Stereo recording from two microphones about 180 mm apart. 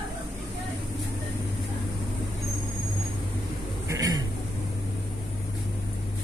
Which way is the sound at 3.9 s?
20° right (ahead or behind).